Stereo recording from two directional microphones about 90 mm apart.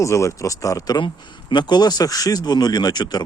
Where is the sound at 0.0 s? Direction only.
35° left (ahead or behind).